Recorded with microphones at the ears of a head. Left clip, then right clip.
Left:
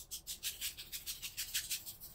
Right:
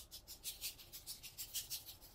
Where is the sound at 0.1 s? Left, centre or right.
Left.